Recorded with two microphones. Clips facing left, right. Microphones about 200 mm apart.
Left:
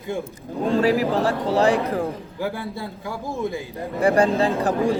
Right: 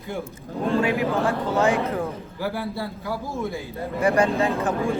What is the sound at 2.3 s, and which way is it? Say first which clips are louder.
A man's voice: right 2 dB; 20° left (ahead or behind).